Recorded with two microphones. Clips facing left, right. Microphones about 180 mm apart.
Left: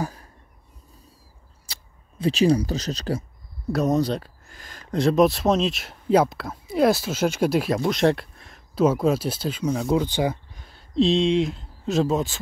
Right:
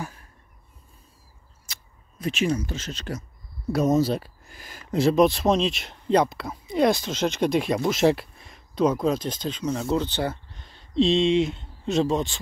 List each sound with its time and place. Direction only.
0.0 s a sound: 40° left (ahead or behind)
1.7 s speech: 30° left (ahead or behind)
3.7 s speech: centre (ahead or behind)